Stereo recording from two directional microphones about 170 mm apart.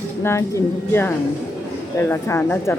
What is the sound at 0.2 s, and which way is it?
A woman's voice, 15° left (ahead or behind).